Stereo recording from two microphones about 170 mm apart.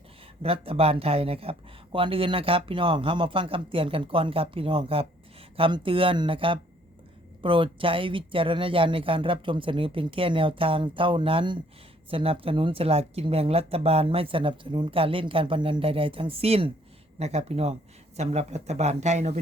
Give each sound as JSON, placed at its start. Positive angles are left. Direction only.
{"t": 0.4, "sound": "speech", "side_deg": -35}